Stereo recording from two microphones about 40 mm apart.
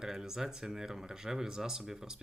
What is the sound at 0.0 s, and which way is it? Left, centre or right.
Speech, centre.